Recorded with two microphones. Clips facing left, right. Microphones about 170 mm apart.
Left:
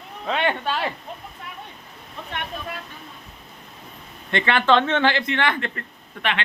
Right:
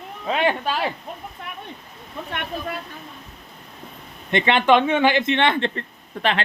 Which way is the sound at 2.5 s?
35° right (ahead or behind).